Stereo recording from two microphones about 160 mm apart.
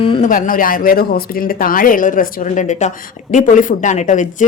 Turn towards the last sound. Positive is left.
turn(degrees=50)  # may be behind; listen again after turning